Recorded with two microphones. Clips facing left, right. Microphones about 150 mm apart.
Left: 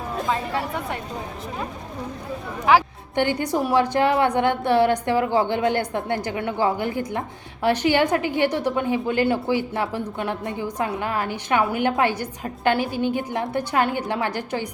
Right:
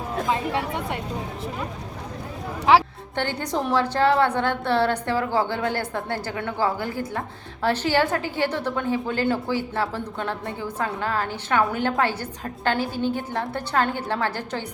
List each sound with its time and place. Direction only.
0.3 s speech: 20° right (ahead or behind)
3.2 s a woman's voice: 15° left (ahead or behind)